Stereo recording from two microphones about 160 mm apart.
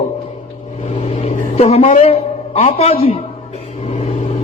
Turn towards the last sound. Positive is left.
turn(degrees=45)  # may be behind; listen again after turning